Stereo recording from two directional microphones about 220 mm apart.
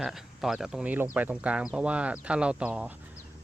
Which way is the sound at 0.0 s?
Centre (ahead or behind).